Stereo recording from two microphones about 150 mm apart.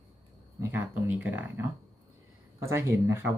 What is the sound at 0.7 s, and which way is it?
Speech, 10° right (ahead or behind).